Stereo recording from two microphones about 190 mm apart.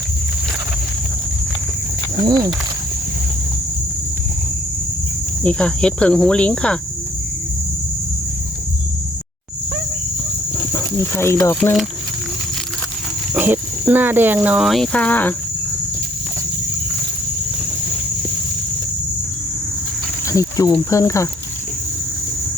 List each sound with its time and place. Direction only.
2.2 s speech: 20° right (ahead or behind)
5.4 s speech: 5° left (ahead or behind)
10.7 s speech: 10° left (ahead or behind)
13.3 s speech: 10° right (ahead or behind); by 15.4 s 10° left (ahead or behind)
20.2 s speech: 15° left (ahead or behind)